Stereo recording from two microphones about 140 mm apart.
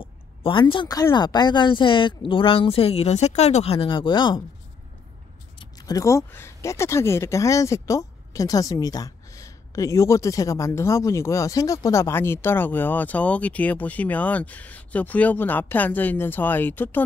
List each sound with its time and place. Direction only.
0.0 s a woman's voice: 40° left (ahead or behind)
5.6 s speech: 25° left (ahead or behind)